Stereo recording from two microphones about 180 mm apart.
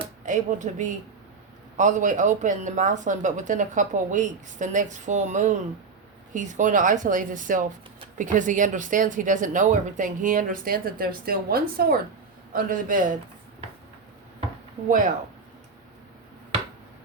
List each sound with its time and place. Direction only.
0.3 s a woman's voice: 45° right (ahead or behind)
14.8 s a woman's voice: 45° right (ahead or behind)